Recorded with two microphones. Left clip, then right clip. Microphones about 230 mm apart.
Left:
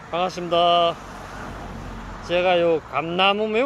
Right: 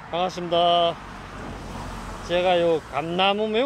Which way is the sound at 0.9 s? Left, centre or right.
Left.